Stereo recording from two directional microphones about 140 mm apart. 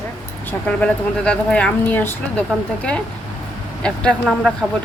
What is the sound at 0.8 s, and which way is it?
Speech, 10° left (ahead or behind).